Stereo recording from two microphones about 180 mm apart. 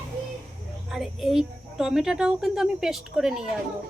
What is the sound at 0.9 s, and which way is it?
A woman's voice, centre (ahead or behind).